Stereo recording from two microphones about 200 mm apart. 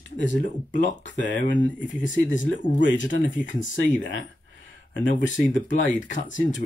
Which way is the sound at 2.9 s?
65° left (ahead or behind).